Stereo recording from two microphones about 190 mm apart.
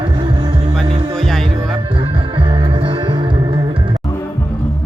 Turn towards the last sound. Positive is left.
turn(degrees=-25)  # may be behind; listen again after turning